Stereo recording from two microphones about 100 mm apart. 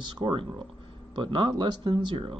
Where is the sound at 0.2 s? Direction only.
55° right (ahead or behind).